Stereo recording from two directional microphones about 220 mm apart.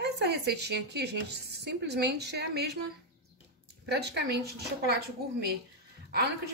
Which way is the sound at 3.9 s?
50° right (ahead or behind).